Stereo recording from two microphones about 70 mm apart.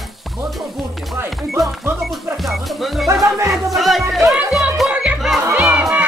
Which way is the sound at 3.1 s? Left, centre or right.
Right.